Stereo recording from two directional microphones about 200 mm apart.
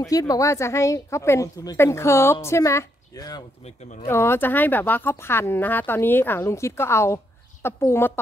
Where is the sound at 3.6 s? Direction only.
35° left (ahead or behind).